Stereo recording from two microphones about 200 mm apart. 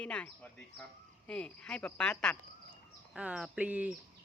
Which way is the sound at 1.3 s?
5° left (ahead or behind).